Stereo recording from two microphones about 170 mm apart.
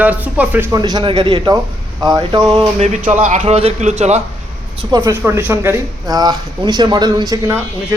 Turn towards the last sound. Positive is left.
turn(degrees=-20)  # may be behind; listen again after turning